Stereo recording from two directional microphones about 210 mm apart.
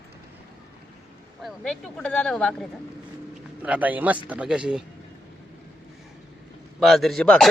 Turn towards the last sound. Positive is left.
turn(degrees=5)  # may be behind; listen again after turning